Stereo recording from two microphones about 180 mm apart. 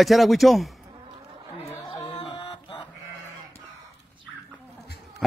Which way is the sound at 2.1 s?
25° left (ahead or behind).